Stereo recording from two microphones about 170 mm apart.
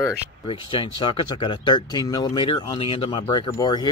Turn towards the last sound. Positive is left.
turn(degrees=25)  # may be behind; listen again after turning